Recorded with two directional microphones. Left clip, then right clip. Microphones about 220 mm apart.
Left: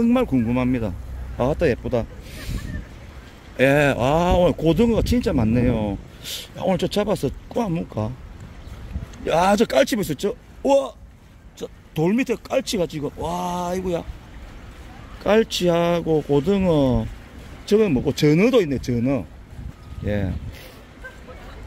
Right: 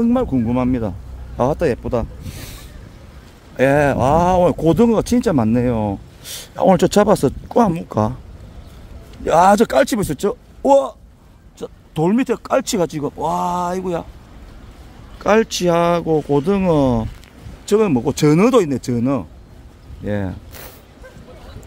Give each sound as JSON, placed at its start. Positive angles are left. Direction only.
{"t": 0.0, "sound": "speech", "side_deg": -10}
{"t": 3.5, "sound": "speech", "side_deg": -10}
{"t": 6.5, "sound": "speech", "side_deg": -25}
{"t": 9.2, "sound": "speech", "side_deg": -15}
{"t": 15.2, "sound": "speech", "side_deg": -10}